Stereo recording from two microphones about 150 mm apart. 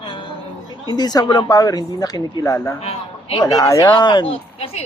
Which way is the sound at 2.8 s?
40° left (ahead or behind).